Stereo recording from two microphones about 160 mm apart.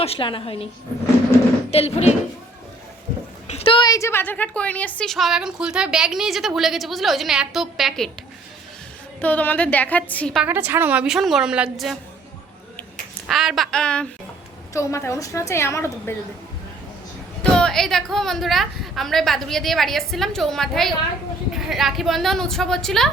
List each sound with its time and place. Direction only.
0.0 s a woman's voice: 35° left (ahead or behind)
1.7 s a woman's voice: 40° left (ahead or behind)
3.4 s a woman's voice: 40° left (ahead or behind); by 8.1 s centre (ahead or behind)
9.2 s a woman's voice: 10° left (ahead or behind)
10.4 s a woman's voice: 10° right (ahead or behind)
13.2 s a woman's voice: 5° right (ahead or behind)
14.7 s a woman's voice: 20° left (ahead or behind)
17.4 s a woman's voice: 5° left (ahead or behind)